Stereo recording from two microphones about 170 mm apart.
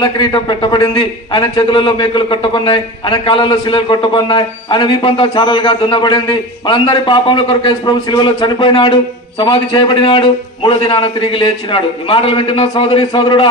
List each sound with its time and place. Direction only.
0.0 s a man's voice: 25° left (ahead or behind)